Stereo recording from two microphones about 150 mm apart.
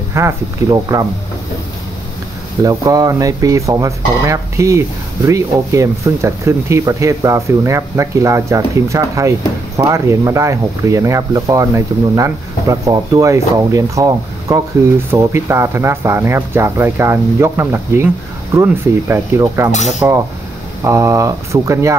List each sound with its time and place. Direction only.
0.1 s speech: 20° right (ahead or behind)
2.6 s speech: 25° right (ahead or behind)